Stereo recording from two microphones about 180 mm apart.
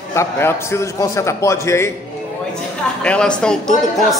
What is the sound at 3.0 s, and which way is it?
Speech, 5° left (ahead or behind).